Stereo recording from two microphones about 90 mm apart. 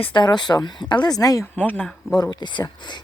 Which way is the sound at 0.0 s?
55° left (ahead or behind).